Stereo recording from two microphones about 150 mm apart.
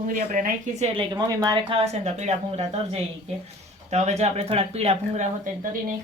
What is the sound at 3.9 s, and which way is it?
Speech, 50° right (ahead or behind).